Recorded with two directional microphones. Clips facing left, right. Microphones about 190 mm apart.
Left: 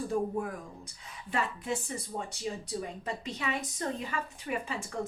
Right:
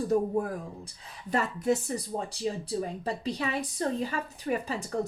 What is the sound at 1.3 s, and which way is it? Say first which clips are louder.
Speech: right 6 dB; 40° right (ahead or behind).